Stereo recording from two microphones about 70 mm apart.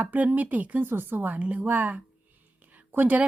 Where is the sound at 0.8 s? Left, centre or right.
Right.